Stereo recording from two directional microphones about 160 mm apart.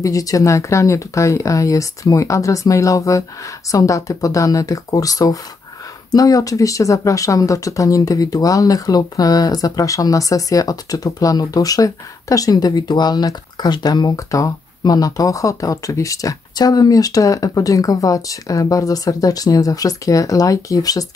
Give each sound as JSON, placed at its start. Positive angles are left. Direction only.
{"t": 0.0, "sound": "speech", "side_deg": 20}